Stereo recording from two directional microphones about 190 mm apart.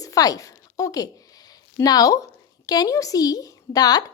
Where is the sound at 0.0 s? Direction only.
20° left (ahead or behind).